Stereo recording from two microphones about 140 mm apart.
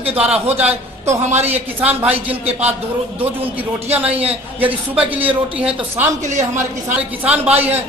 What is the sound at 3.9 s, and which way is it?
A man's voice, 10° right (ahead or behind).